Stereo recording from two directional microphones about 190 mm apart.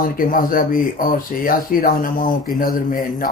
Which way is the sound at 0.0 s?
45° left (ahead or behind).